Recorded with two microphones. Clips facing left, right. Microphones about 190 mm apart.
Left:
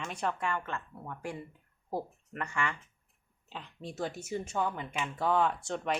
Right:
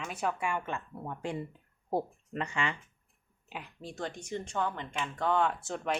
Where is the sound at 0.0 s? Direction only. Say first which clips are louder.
Right 1 dB; 5° right (ahead or behind).